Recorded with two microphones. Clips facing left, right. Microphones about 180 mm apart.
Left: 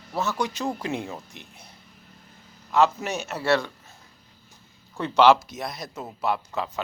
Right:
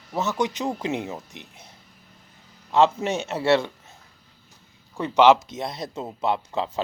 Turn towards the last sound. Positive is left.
turn(degrees=-30)  # may be behind; listen again after turning